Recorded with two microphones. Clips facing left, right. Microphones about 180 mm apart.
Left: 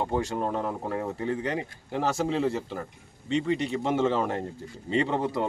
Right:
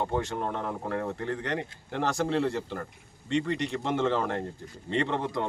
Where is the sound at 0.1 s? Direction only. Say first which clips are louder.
Left 2 dB; 10° left (ahead or behind).